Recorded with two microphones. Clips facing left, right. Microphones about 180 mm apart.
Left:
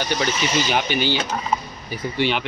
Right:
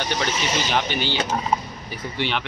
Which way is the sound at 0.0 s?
10° left (ahead or behind).